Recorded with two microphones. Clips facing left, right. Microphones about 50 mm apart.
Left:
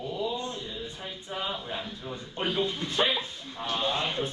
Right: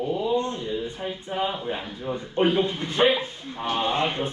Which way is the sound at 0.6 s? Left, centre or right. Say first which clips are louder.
Right 9 dB; right.